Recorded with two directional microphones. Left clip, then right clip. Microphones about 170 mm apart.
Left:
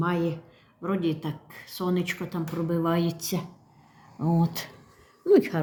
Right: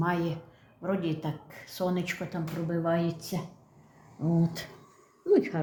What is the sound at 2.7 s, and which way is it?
Speech, 25° left (ahead or behind).